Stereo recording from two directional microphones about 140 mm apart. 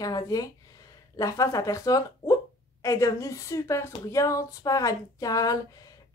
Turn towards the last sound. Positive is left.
turn(degrees=25)  # may be behind; listen again after turning